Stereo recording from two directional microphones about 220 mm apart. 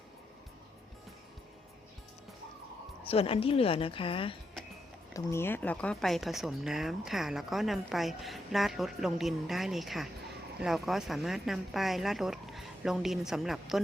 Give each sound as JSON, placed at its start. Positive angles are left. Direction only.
{"t": 3.0, "sound": "a woman's voice", "side_deg": 25}
{"t": 5.1, "sound": "speech", "side_deg": 10}